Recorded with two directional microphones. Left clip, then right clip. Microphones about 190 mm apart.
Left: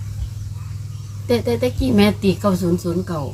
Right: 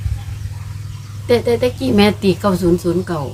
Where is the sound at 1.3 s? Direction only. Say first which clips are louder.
Right 5 dB; 20° right (ahead or behind).